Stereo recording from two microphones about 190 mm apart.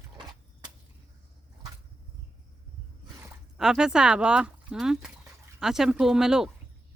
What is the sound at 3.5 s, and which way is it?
Speech, 5° right (ahead or behind).